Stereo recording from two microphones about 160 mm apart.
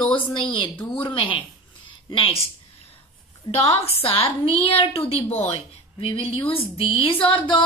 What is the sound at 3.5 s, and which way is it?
Speech, 35° left (ahead or behind).